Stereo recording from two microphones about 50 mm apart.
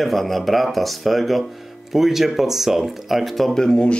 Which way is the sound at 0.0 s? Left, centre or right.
Centre.